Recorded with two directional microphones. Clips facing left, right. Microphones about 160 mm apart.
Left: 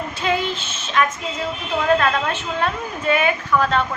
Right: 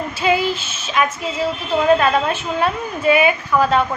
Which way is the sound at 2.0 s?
10° right (ahead or behind).